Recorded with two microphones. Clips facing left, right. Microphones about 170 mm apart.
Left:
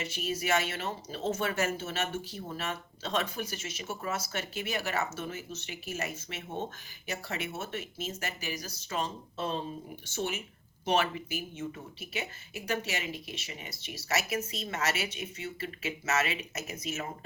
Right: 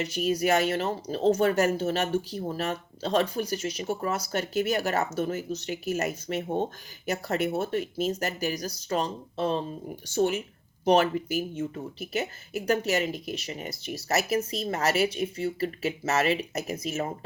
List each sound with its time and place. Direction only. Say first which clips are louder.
0.2 s speech: right 7 dB; 45° right (ahead or behind)